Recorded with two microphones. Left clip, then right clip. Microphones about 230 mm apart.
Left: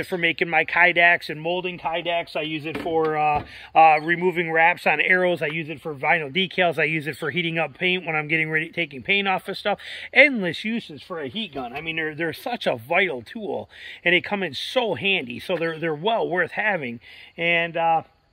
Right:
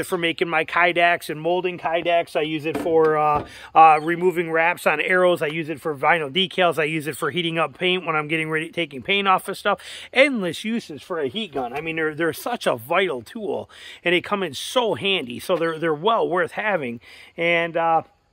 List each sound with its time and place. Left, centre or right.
0.0 s speech: centre